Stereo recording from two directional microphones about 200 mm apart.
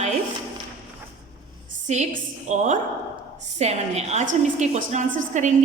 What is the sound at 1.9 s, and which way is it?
A woman's voice, 35° right (ahead or behind).